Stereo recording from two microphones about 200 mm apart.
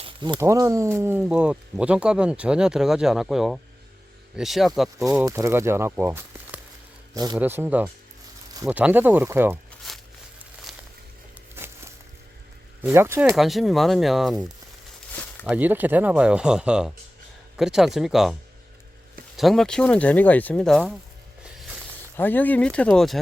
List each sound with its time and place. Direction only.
0.0 s speech: 25° right (ahead or behind); by 4.9 s centre (ahead or behind)
4.9 s a man's voice: 15° right (ahead or behind)
9.9 s a sound: centre (ahead or behind)
11.5 s a sound: 10° right (ahead or behind)
12.8 s speech: 10° right (ahead or behind)
13.3 s speech: centre (ahead or behind)
19.4 s speech: centre (ahead or behind)
22.2 s speech: 10° left (ahead or behind)